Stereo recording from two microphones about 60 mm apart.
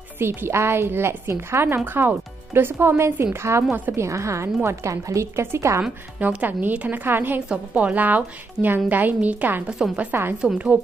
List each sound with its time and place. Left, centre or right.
0.2 s a woman's voice: right
5.8 s a woman's voice: right
7.4 s a woman's voice: centre
8.6 s a woman's voice: centre
8.9 s a woman's voice: right
9.7 s speech: centre